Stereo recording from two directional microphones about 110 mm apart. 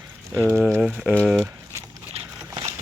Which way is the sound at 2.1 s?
75° right (ahead or behind).